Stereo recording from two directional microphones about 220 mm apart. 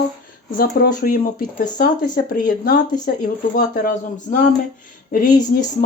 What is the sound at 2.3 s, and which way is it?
Speech, 40° left (ahead or behind).